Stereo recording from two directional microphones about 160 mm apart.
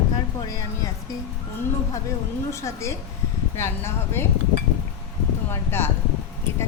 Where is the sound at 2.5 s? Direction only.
20° left (ahead or behind).